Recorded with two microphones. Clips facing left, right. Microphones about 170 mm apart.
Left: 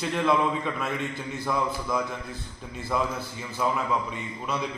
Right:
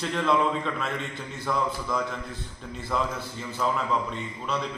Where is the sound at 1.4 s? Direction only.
10° left (ahead or behind).